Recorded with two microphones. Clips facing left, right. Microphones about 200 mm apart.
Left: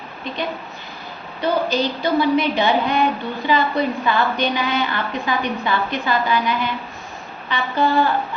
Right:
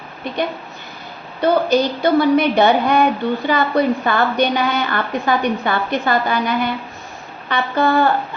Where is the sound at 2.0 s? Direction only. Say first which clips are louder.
Right 2 dB; 55° right (ahead or behind).